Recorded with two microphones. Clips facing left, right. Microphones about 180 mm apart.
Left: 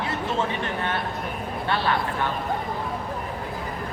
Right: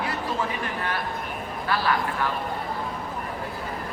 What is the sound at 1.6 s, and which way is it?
Speech, 25° left (ahead or behind).